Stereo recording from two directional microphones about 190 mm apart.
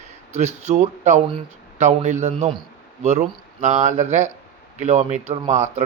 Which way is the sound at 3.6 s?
40° right (ahead or behind).